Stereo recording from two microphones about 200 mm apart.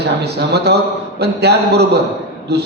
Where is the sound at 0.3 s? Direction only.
55° right (ahead or behind).